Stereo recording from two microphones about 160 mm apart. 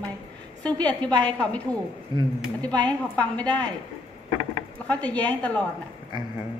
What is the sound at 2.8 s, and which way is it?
Speech, 10° left (ahead or behind).